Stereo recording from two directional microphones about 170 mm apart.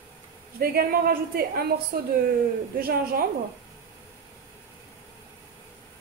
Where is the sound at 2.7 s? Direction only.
60° right (ahead or behind).